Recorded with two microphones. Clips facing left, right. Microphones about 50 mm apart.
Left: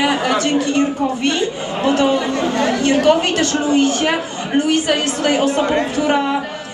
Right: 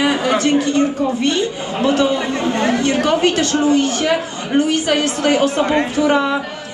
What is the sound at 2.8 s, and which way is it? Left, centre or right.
Speech, left.